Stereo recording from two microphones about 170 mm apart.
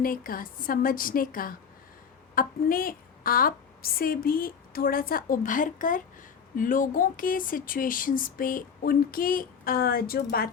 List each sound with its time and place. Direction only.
0.0 s speech: 55° left (ahead or behind)